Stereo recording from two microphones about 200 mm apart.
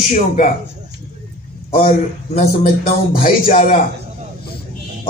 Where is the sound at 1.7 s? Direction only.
45° left (ahead or behind).